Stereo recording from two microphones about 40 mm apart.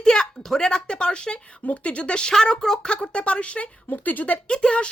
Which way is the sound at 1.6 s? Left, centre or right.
Left.